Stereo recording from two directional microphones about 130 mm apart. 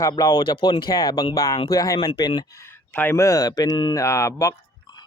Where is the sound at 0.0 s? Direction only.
30° left (ahead or behind).